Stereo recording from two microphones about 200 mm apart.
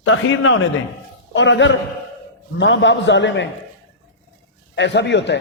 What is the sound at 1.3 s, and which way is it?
A man's voice, 65° left (ahead or behind).